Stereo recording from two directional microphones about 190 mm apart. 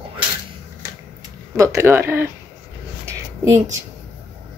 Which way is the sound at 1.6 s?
15° right (ahead or behind).